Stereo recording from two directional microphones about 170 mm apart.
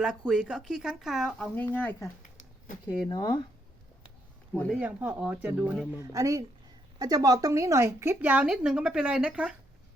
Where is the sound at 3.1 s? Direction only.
25° left (ahead or behind).